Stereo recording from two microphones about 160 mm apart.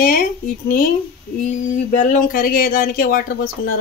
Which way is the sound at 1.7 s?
50° left (ahead or behind).